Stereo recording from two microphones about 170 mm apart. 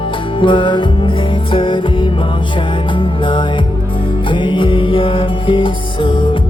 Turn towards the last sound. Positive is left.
turn(degrees=30)  # may be behind; listen again after turning